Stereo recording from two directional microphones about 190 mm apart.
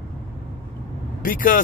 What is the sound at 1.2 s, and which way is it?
Speech, 45° left (ahead or behind).